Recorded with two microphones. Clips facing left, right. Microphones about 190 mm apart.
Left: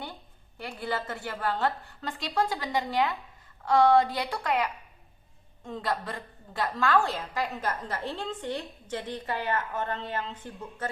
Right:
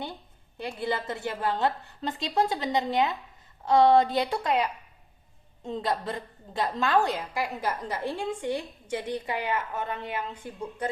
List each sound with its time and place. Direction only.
0.0 s a woman's voice: 20° right (ahead or behind)